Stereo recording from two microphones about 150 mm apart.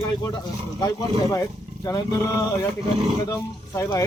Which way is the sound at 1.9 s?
20° left (ahead or behind).